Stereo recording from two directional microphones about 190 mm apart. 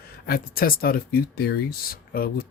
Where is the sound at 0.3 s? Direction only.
50° left (ahead or behind).